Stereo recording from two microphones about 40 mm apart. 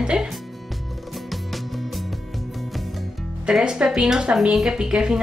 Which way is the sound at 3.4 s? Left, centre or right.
Centre.